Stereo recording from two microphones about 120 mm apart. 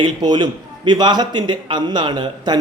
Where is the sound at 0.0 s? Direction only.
35° right (ahead or behind).